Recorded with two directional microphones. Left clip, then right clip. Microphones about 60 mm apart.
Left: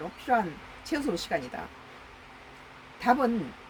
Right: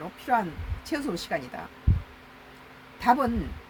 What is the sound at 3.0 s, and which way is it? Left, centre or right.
Speech, right.